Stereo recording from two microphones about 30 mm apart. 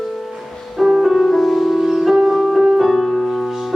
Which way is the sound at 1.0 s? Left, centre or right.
Centre.